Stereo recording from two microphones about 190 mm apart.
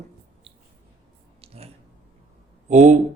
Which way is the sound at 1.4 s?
30° right (ahead or behind).